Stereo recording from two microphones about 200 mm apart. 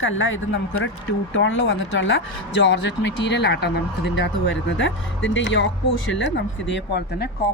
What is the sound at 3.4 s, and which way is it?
Speech, 55° left (ahead or behind).